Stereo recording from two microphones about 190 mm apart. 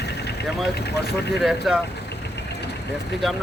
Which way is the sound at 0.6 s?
60° left (ahead or behind).